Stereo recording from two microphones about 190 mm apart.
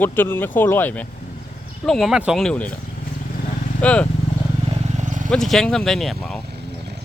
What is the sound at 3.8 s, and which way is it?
Speech, 5° left (ahead or behind).